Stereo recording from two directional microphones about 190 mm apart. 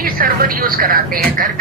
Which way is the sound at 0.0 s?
50° right (ahead or behind).